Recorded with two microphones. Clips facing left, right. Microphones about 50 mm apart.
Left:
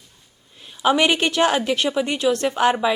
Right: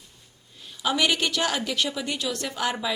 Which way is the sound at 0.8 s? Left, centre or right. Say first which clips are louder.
Left 6 dB; left.